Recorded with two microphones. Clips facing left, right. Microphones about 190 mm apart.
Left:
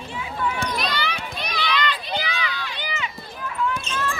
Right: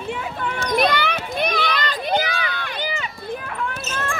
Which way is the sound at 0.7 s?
55° right (ahead or behind).